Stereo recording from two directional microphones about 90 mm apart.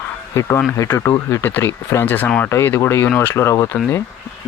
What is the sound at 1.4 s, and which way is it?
Speech, 25° left (ahead or behind).